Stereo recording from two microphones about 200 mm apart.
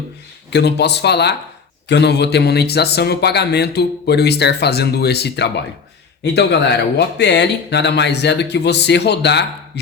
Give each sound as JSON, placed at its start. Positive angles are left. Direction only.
{"t": 0.5, "sound": "a man's voice", "side_deg": 55}